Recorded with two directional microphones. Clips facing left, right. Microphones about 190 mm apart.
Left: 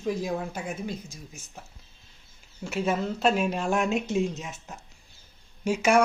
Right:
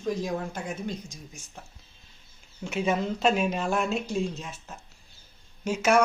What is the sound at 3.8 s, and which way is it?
Speech, 15° left (ahead or behind).